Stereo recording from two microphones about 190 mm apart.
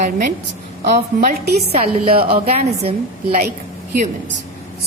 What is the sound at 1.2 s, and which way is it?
Speech, 55° right (ahead or behind).